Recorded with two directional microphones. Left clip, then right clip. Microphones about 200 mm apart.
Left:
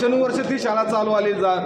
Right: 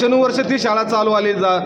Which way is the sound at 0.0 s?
40° right (ahead or behind).